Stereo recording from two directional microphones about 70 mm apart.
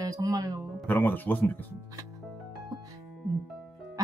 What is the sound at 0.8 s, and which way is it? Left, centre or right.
Speech, left.